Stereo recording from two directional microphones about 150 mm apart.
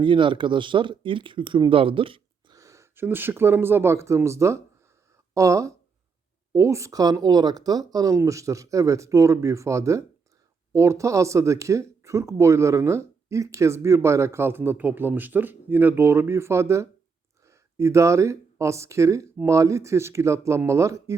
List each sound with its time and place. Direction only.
0.0 s speech: 35° right (ahead or behind)
2.6 s speech: 20° right (ahead or behind)